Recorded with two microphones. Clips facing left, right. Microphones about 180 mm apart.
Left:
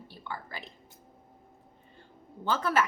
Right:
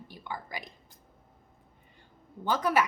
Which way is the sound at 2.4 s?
15° right (ahead or behind).